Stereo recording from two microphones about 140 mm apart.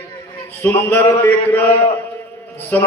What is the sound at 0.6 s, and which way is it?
A man's voice, 15° left (ahead or behind).